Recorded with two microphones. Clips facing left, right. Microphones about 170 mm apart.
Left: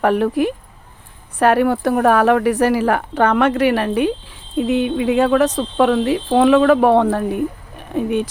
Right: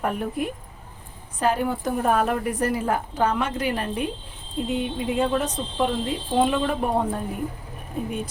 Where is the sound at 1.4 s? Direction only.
70° left (ahead or behind).